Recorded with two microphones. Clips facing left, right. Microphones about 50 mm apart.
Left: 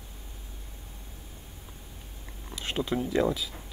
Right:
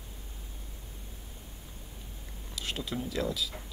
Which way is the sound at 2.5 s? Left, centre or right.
Left.